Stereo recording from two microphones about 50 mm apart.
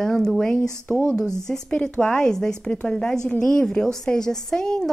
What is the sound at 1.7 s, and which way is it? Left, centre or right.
A woman's voice, left.